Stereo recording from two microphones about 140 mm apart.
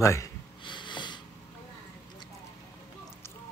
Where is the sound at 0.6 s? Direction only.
35° left (ahead or behind).